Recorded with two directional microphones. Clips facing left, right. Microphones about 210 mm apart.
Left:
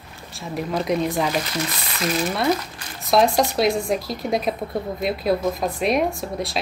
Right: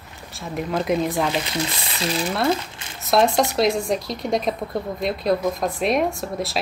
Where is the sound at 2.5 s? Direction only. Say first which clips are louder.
Left 1 dB; 25° right (ahead or behind).